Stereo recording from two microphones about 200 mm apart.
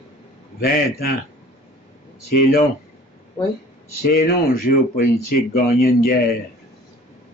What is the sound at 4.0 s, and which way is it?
Speech, 50° left (ahead or behind).